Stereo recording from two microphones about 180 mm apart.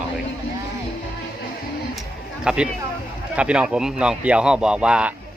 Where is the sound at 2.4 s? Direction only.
5° right (ahead or behind).